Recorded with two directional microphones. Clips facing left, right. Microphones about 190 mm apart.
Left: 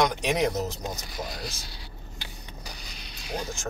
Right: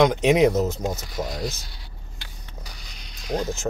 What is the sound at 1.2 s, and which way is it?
Speech, 50° right (ahead or behind).